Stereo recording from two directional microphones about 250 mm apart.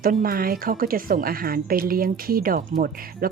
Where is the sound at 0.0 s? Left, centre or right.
Right.